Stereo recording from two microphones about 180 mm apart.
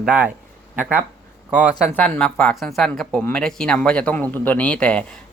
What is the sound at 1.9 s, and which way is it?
Speech, 10° left (ahead or behind).